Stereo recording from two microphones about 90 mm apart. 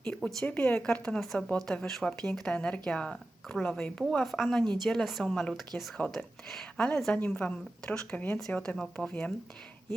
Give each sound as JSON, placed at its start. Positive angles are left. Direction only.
{"t": 0.2, "sound": "speech", "side_deg": 0}
{"t": 0.4, "sound": "speech", "side_deg": 15}
{"t": 8.4, "sound": "speech", "side_deg": 5}